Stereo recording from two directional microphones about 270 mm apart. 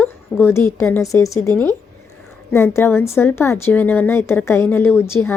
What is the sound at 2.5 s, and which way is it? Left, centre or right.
A woman's voice, centre.